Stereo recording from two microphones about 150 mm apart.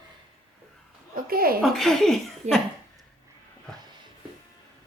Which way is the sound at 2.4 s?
50° right (ahead or behind).